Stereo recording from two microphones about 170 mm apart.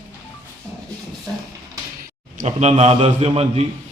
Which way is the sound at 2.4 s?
40° right (ahead or behind).